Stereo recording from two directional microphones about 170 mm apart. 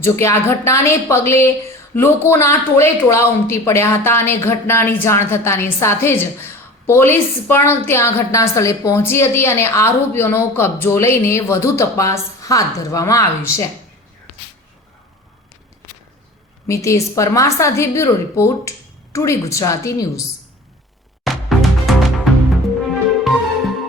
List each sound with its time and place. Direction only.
0.0 s speech: 15° left (ahead or behind)
16.6 s speech: 20° left (ahead or behind)
21.2 s music: centre (ahead or behind)